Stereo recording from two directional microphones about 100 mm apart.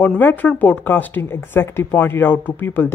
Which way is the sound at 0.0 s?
20° left (ahead or behind).